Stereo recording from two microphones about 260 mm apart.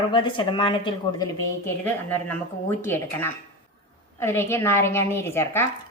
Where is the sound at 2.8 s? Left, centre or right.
Centre.